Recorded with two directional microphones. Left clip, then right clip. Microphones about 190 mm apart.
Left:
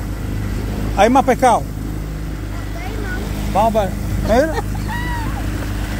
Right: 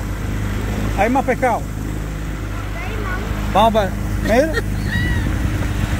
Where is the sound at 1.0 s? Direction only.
20° left (ahead or behind).